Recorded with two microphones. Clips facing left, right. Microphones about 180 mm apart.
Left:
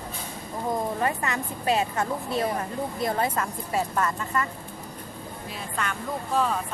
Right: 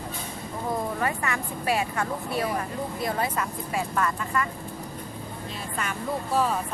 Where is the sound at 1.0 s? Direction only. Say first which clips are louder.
Left 1 dB; 25° left (ahead or behind).